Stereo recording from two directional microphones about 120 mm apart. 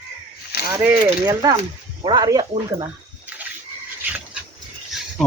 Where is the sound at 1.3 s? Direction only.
30° right (ahead or behind).